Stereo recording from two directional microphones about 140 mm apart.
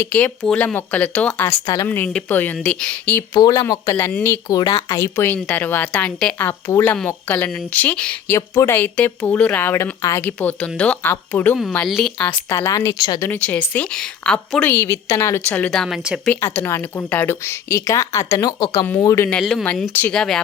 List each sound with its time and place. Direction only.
0.0 s a woman's voice: 10° left (ahead or behind)
1.6 s a woman's voice: 25° left (ahead or behind)
1.9 s a woman's voice: 15° left (ahead or behind)
3.3 s a woman's voice: 25° left (ahead or behind)
4.4 s a woman's voice: 25° left (ahead or behind); by 8.4 s 10° left (ahead or behind)
8.4 s a woman's voice: 20° left (ahead or behind)
11.9 s speech: centre (ahead or behind)
12.5 s a woman's voice: 20° left (ahead or behind)
13.2 s a woman's voice: 15° left (ahead or behind)
16.0 s speech: 5° right (ahead or behind)
16.3 s a woman's voice: 15° left (ahead or behind)
19.4 s speech: centre (ahead or behind)